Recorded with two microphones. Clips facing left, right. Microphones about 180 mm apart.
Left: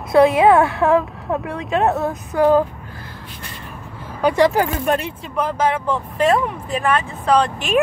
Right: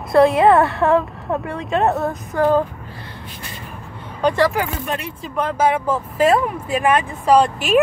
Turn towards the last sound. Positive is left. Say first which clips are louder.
# right 2 dB
turn(degrees=-5)  # may be behind; listen again after turning